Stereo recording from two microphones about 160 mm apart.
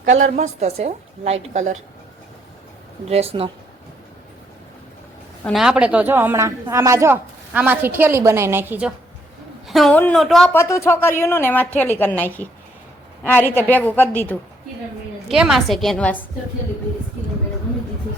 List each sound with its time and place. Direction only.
0.0 s a woman's voice: 50° right (ahead or behind)
3.1 s speech: 40° right (ahead or behind)
5.5 s speech: 5° right (ahead or behind)
9.6 s a woman's voice: centre (ahead or behind)
10.5 s a woman's voice: 15° left (ahead or behind)
15.3 s a woman's voice: 5° right (ahead or behind)